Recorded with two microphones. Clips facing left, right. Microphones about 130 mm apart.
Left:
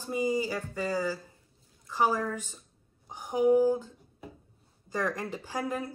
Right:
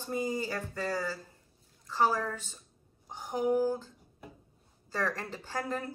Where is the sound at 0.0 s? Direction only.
10° left (ahead or behind).